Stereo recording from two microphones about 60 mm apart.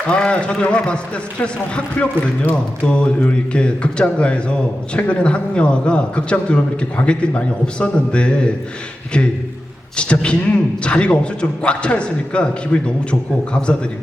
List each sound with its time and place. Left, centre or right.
0.1 s a man's voice: centre
10.0 s a man's voice: centre